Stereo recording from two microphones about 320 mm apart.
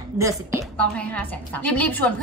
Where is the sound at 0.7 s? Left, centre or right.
Centre.